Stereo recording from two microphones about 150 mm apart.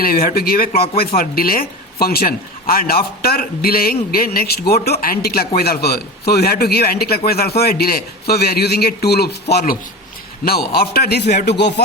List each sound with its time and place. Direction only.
0.0 s speech: 75° left (ahead or behind); by 11.5 s 90° left